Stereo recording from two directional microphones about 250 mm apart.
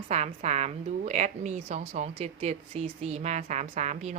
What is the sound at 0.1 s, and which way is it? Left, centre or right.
A woman's voice, right.